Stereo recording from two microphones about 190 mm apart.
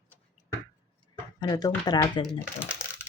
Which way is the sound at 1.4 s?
20° left (ahead or behind).